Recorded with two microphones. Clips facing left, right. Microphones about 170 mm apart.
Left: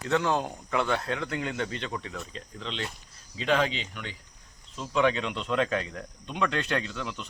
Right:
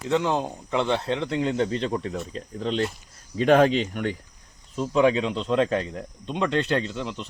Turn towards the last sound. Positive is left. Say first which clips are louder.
# right 5 dB
turn(degrees=-30)  # may be behind; listen again after turning